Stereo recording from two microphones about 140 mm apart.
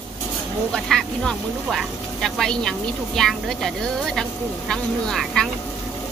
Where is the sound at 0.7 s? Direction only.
5° left (ahead or behind).